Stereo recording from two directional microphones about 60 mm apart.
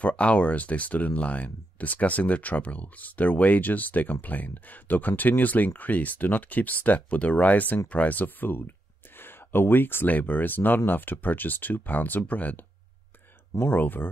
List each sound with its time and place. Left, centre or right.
0.0 s speech: left
13.6 s speech: left